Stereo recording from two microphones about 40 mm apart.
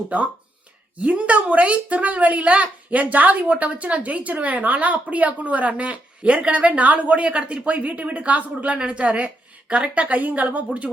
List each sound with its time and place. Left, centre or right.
0.9 s speech: right